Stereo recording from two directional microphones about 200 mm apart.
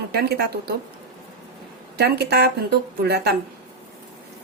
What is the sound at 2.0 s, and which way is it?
A woman's voice, 55° right (ahead or behind).